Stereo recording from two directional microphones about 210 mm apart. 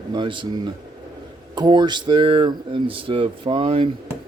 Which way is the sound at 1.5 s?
20° right (ahead or behind).